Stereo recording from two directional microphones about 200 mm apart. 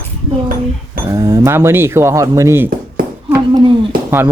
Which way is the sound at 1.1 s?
15° right (ahead or behind).